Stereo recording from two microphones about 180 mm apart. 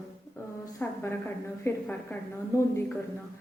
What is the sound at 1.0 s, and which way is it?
A woman's voice, 15° left (ahead or behind).